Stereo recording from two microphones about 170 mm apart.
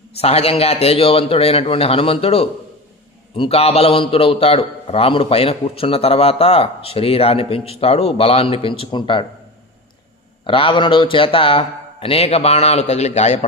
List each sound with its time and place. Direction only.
0.2 s a man's voice: 35° left (ahead or behind)
10.4 s a man's voice: 30° left (ahead or behind)